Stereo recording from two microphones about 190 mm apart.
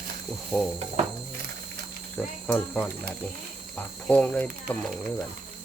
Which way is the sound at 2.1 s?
10° left (ahead or behind).